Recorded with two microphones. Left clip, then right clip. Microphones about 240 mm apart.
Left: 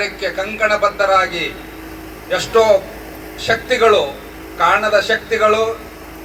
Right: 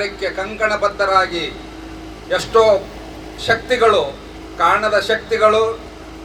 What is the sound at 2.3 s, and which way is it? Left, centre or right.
A man's voice, right.